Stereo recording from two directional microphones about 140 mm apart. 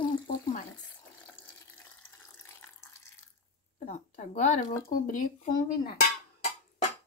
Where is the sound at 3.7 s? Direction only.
60° left (ahead or behind).